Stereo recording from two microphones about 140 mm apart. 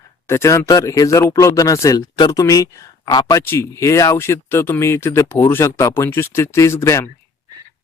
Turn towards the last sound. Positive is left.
turn(degrees=20)  # may be behind; listen again after turning